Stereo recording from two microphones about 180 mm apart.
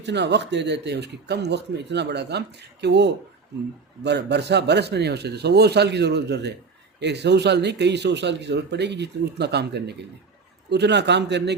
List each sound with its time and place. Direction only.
0.0 s a man's voice: 75° right (ahead or behind)